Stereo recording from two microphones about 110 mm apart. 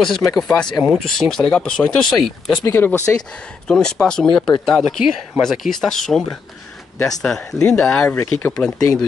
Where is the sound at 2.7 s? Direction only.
15° left (ahead or behind).